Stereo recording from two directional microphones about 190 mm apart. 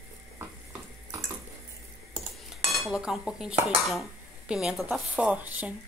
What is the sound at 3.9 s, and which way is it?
A woman's voice, centre (ahead or behind).